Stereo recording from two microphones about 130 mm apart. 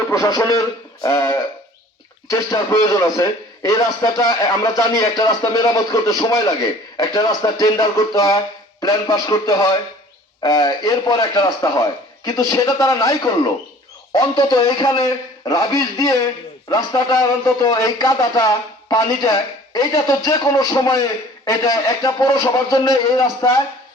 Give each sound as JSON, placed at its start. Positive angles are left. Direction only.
{"t": 0.1, "sound": "a man's voice", "side_deg": 30}